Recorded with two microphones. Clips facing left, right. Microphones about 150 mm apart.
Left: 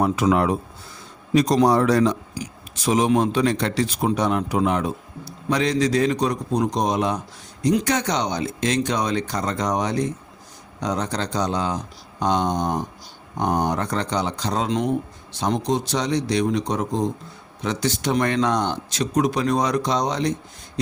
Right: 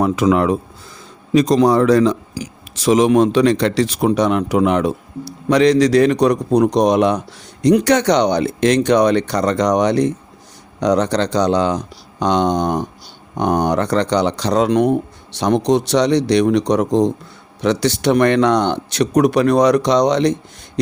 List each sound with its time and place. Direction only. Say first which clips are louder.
0.0 s speech: right 4 dB; 90° right
2.0 s speech: right 5 dB; 90° right